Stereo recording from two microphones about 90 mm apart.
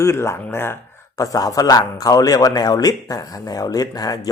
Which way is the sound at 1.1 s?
40° left (ahead or behind).